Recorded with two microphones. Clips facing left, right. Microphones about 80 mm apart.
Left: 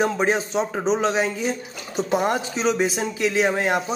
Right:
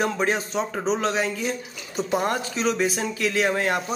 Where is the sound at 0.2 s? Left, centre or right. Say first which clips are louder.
Left 3 dB; centre.